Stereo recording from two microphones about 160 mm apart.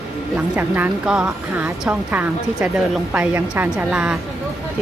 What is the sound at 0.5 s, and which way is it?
Speech, 10° right (ahead or behind).